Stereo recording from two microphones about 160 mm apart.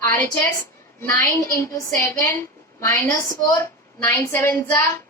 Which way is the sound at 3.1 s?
20° left (ahead or behind).